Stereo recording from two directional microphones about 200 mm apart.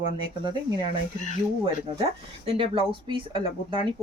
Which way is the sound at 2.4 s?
25° right (ahead or behind).